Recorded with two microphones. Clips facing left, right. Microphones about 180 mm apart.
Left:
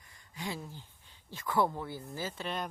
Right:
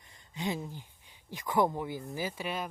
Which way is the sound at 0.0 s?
20° right (ahead or behind).